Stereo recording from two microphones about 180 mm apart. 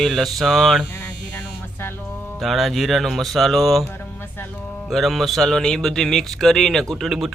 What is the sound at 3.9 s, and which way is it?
Speech, 10° left (ahead or behind).